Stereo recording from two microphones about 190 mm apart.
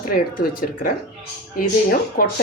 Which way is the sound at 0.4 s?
55° left (ahead or behind).